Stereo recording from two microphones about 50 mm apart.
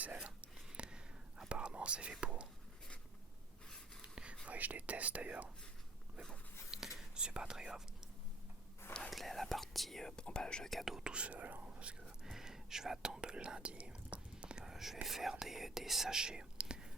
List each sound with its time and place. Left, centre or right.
0.0 s a sound: right
0.9 s whispering: centre
2.2 s speech: right
4.0 s whispering: right
4.4 s speech: right
6.7 s whispering: centre
9.0 s speech: centre
10.8 s speech: centre
11.1 s speech: right
11.9 s speech: centre
14.6 s whispering: centre
15.0 s speech: centre